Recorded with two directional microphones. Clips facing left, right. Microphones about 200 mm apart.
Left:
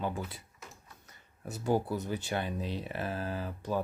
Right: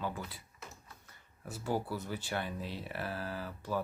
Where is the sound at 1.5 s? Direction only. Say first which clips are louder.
Left 5 dB; 20° left (ahead or behind).